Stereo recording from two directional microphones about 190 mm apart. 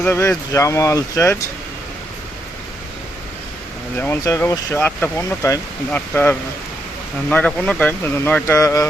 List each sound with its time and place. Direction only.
0.0 s speech: 15° left (ahead or behind)
3.9 s speech: 10° left (ahead or behind)